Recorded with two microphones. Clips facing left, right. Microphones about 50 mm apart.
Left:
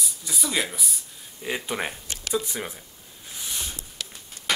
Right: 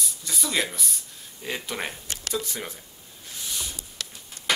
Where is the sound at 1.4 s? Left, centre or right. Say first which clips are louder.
Left 2 dB; centre.